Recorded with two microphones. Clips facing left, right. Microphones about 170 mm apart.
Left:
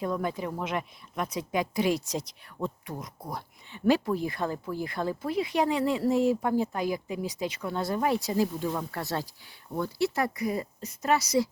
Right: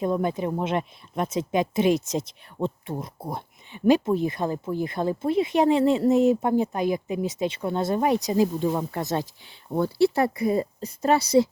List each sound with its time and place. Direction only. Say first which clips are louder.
0.0 s speech: right 6 dB; 20° right (ahead or behind)
9.7 s speech: right 7 dB; 30° right (ahead or behind)